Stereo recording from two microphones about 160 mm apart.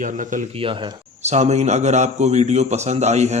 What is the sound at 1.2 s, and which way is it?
Speech, 45° right (ahead or behind).